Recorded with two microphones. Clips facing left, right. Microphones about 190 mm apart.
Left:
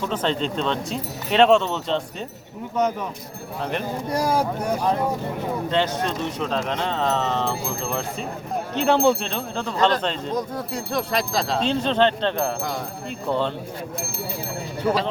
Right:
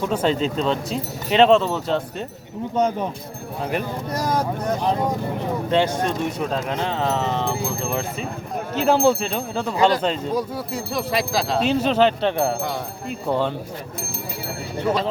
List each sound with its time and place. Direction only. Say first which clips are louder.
0.0 s speech: right 3 dB; 10° right (ahead or behind)
2.7 s speech: right 2 dB; 30° right (ahead or behind)
3.6 s speech: right 2 dB; 5° right (ahead or behind)
4.1 s speech: left 1 dB; 10° left (ahead or behind)
5.7 s speech: right 4 dB; 10° right (ahead or behind)
8.7 s speech: right 1 dB; 5° right (ahead or behind)